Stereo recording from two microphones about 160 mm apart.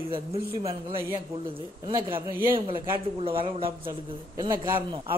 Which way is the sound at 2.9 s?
35° right (ahead or behind).